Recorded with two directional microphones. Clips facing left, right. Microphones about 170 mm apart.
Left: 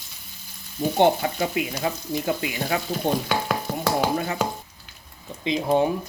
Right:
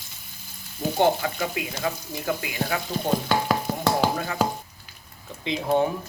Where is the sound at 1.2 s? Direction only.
25° left (ahead or behind).